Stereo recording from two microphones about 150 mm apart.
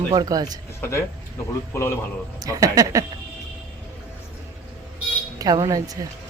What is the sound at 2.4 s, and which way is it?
Speech, 25° right (ahead or behind).